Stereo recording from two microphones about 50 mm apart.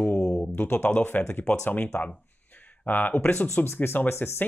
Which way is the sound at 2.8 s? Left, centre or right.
Left.